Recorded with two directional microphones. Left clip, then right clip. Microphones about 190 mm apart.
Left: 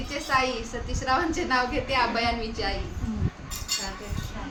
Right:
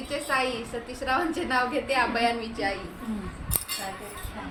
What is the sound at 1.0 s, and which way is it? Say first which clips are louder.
A woman's voice: left 2 dB; 10° left (ahead or behind).